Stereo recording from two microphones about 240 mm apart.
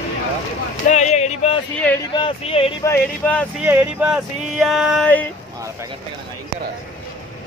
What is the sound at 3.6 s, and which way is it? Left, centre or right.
Speech, centre.